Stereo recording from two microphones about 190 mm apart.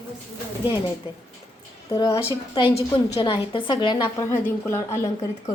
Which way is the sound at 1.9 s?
20° left (ahead or behind).